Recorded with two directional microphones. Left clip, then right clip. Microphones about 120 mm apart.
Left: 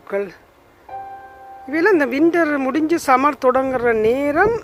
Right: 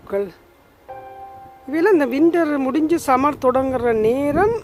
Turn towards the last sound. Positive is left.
turn(degrees=-40)  # may be behind; listen again after turning